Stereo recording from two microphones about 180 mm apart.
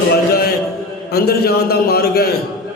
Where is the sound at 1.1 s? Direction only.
60° left (ahead or behind).